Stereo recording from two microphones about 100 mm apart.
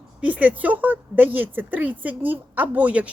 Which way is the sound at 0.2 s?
15° right (ahead or behind).